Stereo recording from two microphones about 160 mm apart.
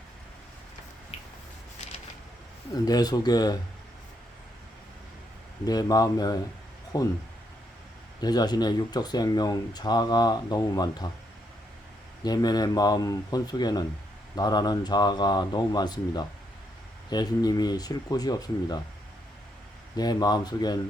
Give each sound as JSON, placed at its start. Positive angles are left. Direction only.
{"t": 1.1, "sound": "a sound", "side_deg": 40}
{"t": 2.7, "sound": "speech", "side_deg": 25}
{"t": 5.6, "sound": "speech", "side_deg": 25}
{"t": 8.2, "sound": "speech", "side_deg": 25}
{"t": 12.2, "sound": "speech", "side_deg": 25}
{"t": 20.0, "sound": "speech", "side_deg": 25}